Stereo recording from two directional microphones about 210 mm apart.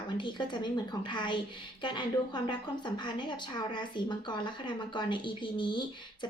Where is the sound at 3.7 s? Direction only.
20° left (ahead or behind).